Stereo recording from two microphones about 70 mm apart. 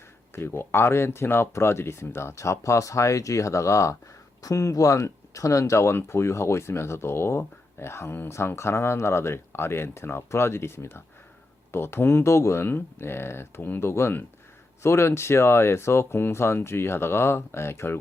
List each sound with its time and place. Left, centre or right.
0.3 s speech: left